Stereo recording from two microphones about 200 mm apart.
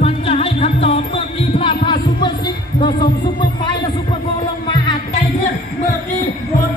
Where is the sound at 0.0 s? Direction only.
30° left (ahead or behind).